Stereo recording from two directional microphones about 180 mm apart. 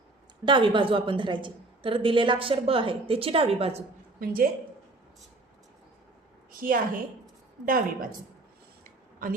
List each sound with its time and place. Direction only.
0.4 s a woman's voice: 25° right (ahead or behind)
4.2 s a woman's voice: 55° right (ahead or behind)
6.5 s a woman's voice: 50° right (ahead or behind)
8.8 s a sound: 50° right (ahead or behind)